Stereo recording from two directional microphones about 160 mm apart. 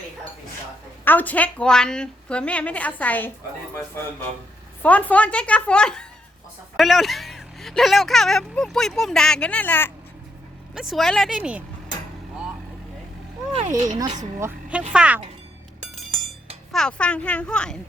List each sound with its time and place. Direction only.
1.0 s a woman's voice: 10° left (ahead or behind)
4.8 s a woman's voice: 10° left (ahead or behind)
10.8 s speech: centre (ahead or behind)
13.8 s speech: 25° right (ahead or behind); by 15.2 s 5° right (ahead or behind)
16.7 s a woman's voice: 5° left (ahead or behind)